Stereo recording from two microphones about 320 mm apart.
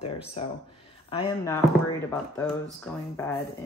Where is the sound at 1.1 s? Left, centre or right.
Centre.